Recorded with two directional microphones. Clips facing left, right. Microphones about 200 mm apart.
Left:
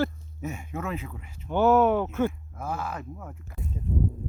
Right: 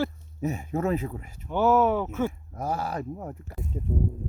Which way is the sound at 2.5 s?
40° right (ahead or behind).